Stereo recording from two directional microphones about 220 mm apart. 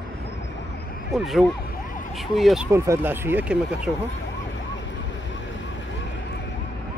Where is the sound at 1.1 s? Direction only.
Centre (ahead or behind).